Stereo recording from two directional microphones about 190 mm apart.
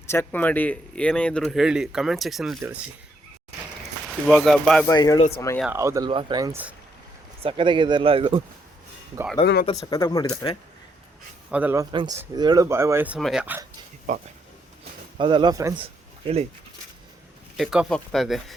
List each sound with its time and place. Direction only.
0.1 s speech: 10° left (ahead or behind); by 2.9 s 10° right (ahead or behind)
4.0 s speech: centre (ahead or behind)
4.9 s speech: 20° left (ahead or behind)
5.7 s speech: 15° right (ahead or behind)
7.4 s speech: 25° right (ahead or behind)
9.4 s speech: 40° left (ahead or behind)
9.9 s speech: 20° left (ahead or behind)
11.5 s speech: 10° right (ahead or behind)
13.1 s speech: centre (ahead or behind)
14.1 s speech: 40° right (ahead or behind)
15.2 s speech: 25° right (ahead or behind)
15.8 s a sound: 30° right (ahead or behind)
17.6 s speech: centre (ahead or behind)